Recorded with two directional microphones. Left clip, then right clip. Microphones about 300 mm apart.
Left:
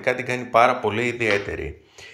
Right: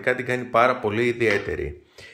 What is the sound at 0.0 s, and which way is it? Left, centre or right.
Speech, centre.